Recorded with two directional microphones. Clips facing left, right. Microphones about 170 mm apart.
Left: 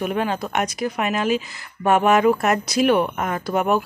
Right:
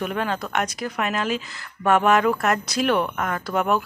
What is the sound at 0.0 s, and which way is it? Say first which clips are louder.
Speech: left 3 dB; 15° left (ahead or behind).